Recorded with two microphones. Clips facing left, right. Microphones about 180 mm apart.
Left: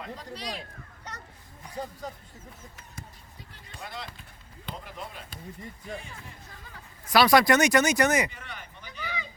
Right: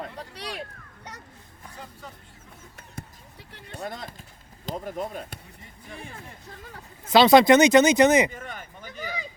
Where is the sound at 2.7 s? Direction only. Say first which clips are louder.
Right 4 dB; 65° right (ahead or behind).